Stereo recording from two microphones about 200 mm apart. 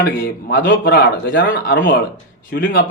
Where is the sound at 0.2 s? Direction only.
50° left (ahead or behind).